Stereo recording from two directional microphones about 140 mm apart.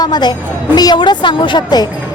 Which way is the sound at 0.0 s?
30° left (ahead or behind).